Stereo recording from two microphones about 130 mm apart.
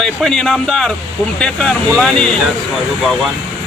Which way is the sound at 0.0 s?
5° left (ahead or behind).